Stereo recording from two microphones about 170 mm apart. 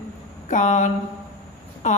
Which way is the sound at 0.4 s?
45° left (ahead or behind).